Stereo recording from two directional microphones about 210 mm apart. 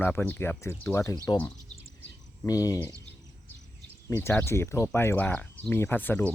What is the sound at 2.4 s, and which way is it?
Speech, 15° left (ahead or behind).